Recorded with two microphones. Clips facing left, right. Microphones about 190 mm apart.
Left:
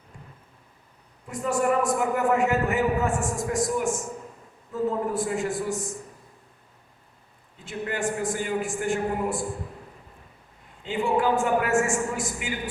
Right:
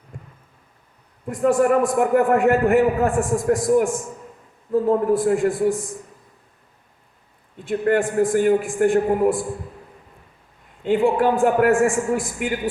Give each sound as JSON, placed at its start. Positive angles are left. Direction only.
{"t": 1.3, "sound": "a man's voice", "side_deg": -55}
{"t": 7.6, "sound": "a man's voice", "side_deg": -55}
{"t": 10.8, "sound": "a man's voice", "side_deg": -55}